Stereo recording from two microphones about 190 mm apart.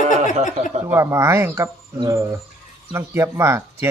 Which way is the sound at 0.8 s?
15° right (ahead or behind).